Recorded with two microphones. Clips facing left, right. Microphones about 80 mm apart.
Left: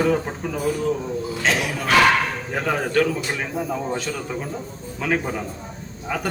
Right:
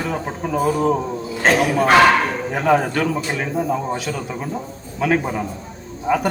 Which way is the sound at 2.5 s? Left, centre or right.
Centre.